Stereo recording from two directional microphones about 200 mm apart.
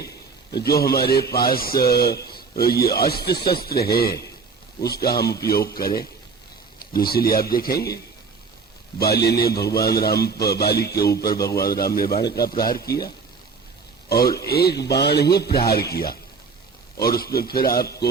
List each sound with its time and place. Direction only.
0.5 s a man's voice: 50° left (ahead or behind)
9.0 s a man's voice: 50° left (ahead or behind)
14.1 s a man's voice: 50° left (ahead or behind)